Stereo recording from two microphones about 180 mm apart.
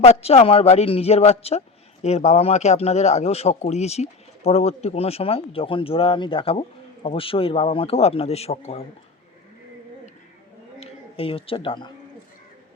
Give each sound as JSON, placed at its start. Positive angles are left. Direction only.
{"t": 0.0, "sound": "speech", "side_deg": 35}
{"t": 10.8, "sound": "speech", "side_deg": 30}